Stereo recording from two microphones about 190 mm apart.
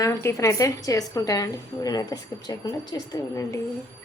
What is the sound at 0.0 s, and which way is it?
A woman's voice, 15° left (ahead or behind).